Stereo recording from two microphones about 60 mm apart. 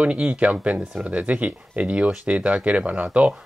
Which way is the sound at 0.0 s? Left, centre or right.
Right.